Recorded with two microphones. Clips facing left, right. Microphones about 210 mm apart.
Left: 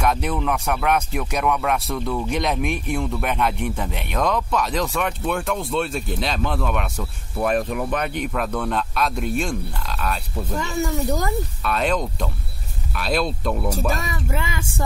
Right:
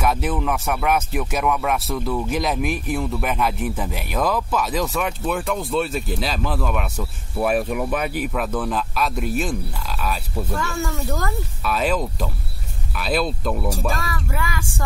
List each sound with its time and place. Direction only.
0.0 s speech: 5° right (ahead or behind)
10.5 s speech: 20° left (ahead or behind)
11.6 s speech: 5° right (ahead or behind)
13.9 s speech: 20° left (ahead or behind)